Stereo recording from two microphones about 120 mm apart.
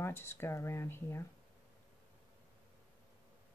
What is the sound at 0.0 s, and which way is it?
Speech, 20° left (ahead or behind).